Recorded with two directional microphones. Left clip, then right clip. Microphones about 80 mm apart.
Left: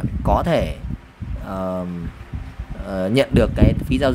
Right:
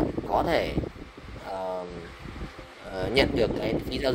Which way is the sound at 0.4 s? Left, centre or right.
Left.